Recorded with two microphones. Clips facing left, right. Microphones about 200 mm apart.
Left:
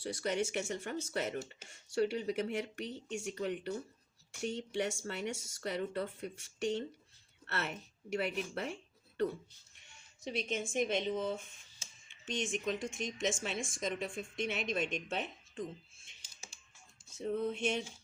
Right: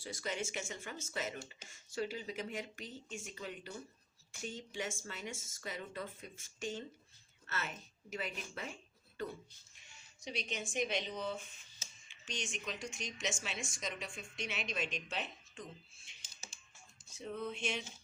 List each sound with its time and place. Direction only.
0.0 s speech: 65° left (ahead or behind)
10.2 s a woman's voice: 55° left (ahead or behind)
11.1 s speech: 20° left (ahead or behind)
12.2 s a woman's voice: 55° left (ahead or behind)
17.0 s music: 10° left (ahead or behind)
17.3 s a woman's voice: 50° left (ahead or behind)